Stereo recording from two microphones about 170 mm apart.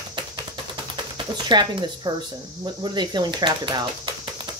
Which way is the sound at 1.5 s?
25° right (ahead or behind).